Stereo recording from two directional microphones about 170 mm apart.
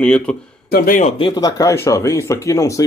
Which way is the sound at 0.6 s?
60° left (ahead or behind).